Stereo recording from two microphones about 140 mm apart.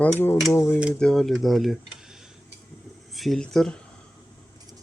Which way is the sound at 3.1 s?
Centre (ahead or behind).